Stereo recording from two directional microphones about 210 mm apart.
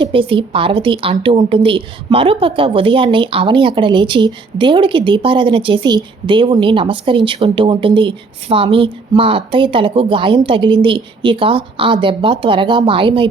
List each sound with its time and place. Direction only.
0.0 s a woman's voice: 25° right (ahead or behind)